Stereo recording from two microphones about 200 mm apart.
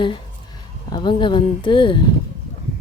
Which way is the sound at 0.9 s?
25° left (ahead or behind).